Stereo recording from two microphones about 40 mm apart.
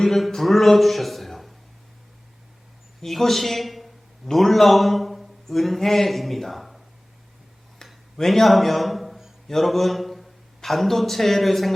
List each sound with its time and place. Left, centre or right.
0.0 s a man's voice: centre
3.0 s a man's voice: centre
7.8 s a sound: centre
8.3 s a man's voice: centre